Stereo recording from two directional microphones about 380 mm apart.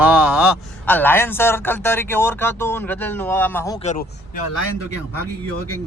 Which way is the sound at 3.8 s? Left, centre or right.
Left.